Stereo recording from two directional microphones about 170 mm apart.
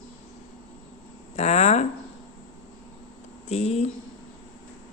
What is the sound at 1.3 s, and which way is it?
Speech, 40° left (ahead or behind).